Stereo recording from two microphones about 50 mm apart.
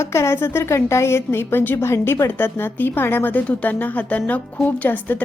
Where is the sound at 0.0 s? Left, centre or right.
Left.